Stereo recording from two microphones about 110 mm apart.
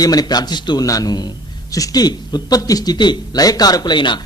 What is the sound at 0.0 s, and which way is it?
Speech, 35° left (ahead or behind).